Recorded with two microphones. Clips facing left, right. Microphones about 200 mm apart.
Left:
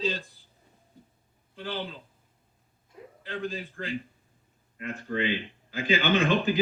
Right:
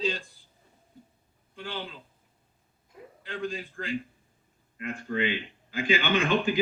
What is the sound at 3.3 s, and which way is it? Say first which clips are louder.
Speech: even; 35° left (ahead or behind).